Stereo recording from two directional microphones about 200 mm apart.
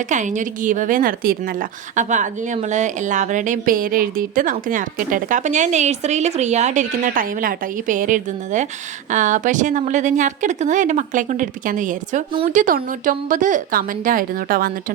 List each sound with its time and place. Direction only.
0.1 s a woman's voice: 40° right (ahead or behind)